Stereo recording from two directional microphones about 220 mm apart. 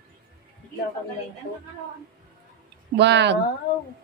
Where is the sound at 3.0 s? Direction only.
50° right (ahead or behind).